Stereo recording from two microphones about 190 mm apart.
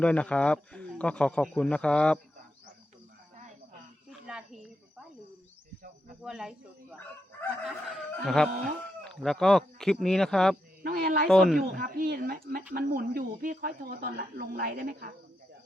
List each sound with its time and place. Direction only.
0.0 s speech: 5° left (ahead or behind)
6.2 s speech: 5° right (ahead or behind)
7.6 s chicken: centre (ahead or behind)
9.2 s speech: centre (ahead or behind)
10.8 s a sound: 50° right (ahead or behind)
11.3 s speech: centre (ahead or behind)
11.6 s speech: 50° right (ahead or behind)